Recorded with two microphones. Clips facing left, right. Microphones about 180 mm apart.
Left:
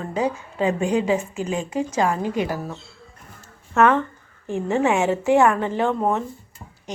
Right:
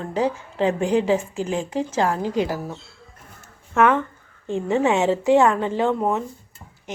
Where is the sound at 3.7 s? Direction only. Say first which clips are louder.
Left 1 dB; 15° right (ahead or behind).